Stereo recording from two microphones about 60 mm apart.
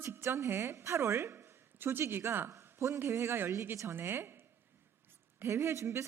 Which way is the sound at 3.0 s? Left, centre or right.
Right.